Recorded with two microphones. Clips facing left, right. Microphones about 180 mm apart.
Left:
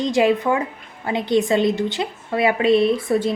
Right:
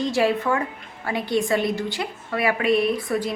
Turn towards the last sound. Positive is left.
turn(degrees=25)  # may be behind; listen again after turning